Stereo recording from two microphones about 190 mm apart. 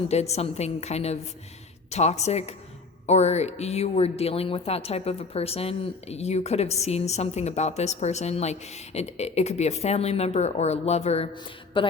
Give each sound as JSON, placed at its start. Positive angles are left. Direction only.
{"t": 0.1, "sound": "speech", "side_deg": 35}